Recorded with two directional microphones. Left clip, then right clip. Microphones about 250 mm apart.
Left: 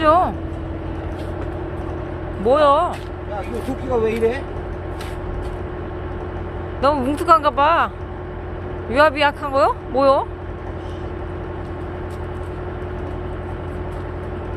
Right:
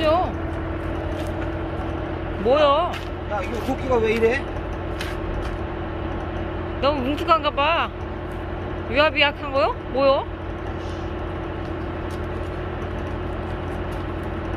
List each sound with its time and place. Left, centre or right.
0.0 s vehicle: left
2.4 s speech: centre
4.0 s speech: centre
6.8 s speech: centre
8.9 s speech: centre